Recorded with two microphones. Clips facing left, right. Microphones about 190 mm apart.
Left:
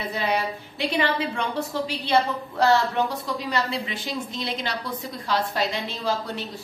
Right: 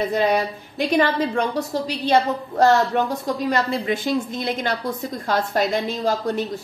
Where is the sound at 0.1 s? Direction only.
45° right (ahead or behind).